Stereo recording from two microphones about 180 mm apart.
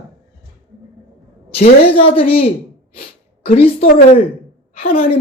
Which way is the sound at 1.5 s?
35° left (ahead or behind).